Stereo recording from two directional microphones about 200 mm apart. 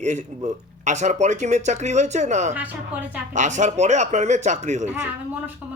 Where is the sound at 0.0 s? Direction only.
35° right (ahead or behind).